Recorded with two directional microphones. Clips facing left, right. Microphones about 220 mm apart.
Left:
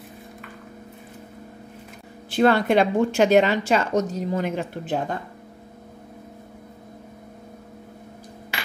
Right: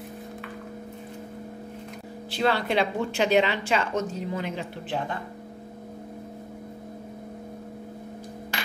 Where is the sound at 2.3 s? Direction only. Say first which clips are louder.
Left 7 dB; 50° left (ahead or behind).